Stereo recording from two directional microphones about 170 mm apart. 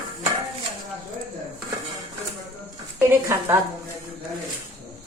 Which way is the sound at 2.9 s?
15° right (ahead or behind).